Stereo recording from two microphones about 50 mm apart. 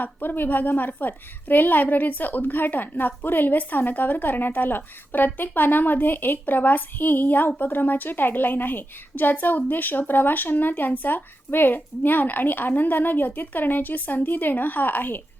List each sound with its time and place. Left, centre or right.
0.0 s a woman's voice: left